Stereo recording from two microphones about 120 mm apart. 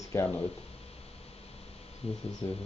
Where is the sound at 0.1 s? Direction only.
20° left (ahead or behind).